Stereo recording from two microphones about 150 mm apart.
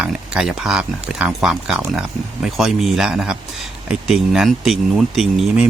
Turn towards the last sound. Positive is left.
turn(degrees=-5)  # may be behind; listen again after turning